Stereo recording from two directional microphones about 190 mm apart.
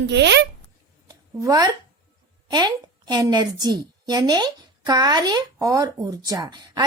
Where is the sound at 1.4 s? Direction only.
20° right (ahead or behind).